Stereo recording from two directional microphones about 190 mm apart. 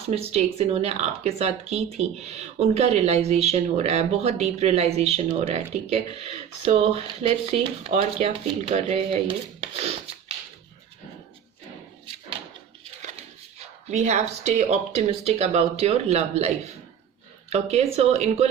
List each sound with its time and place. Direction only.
0.1 s speech: 35° right (ahead or behind)
13.9 s speech: 35° right (ahead or behind)
17.5 s speech: 35° right (ahead or behind)